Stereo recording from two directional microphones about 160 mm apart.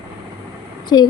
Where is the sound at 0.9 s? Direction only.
25° left (ahead or behind).